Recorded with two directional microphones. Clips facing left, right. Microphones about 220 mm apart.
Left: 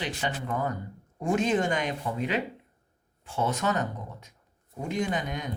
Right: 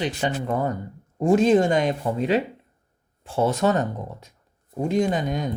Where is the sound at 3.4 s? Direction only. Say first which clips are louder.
Right 7 dB; 30° right (ahead or behind).